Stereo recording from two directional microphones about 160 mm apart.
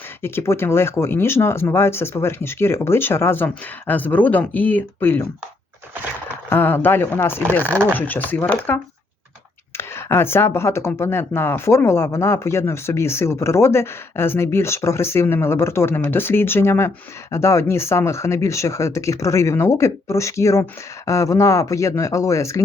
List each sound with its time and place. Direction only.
0.2 s speech: 15° left (ahead or behind)
6.5 s speech: 10° left (ahead or behind)